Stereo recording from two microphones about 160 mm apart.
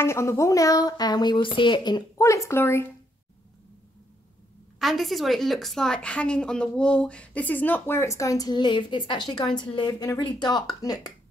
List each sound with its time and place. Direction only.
0.0 s speech: 15° left (ahead or behind)
4.7 s a woman's voice: centre (ahead or behind); by 11.1 s 20° left (ahead or behind)